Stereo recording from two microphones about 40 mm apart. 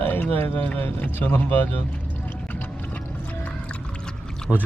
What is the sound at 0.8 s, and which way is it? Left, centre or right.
Speech, left.